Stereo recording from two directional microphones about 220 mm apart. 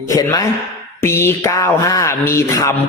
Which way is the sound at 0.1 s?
15° left (ahead or behind).